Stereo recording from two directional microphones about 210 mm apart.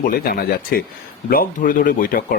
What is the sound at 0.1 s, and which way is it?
A man's voice, 45° left (ahead or behind).